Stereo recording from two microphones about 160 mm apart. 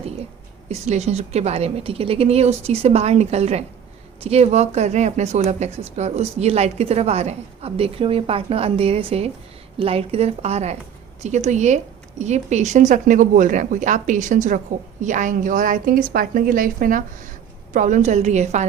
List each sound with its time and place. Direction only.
0.7 s speech: 45° right (ahead or behind)